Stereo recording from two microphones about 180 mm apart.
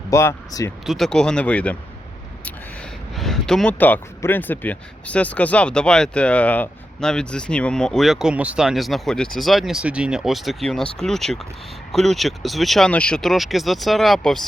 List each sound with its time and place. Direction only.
0.1 s speech: 15° left (ahead or behind)
0.9 s speech: centre (ahead or behind)
3.2 s speech: centre (ahead or behind)